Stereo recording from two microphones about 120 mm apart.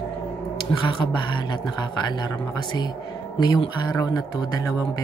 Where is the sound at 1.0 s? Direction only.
40° left (ahead or behind).